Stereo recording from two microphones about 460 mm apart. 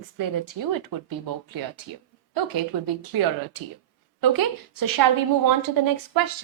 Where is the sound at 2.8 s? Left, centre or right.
Right.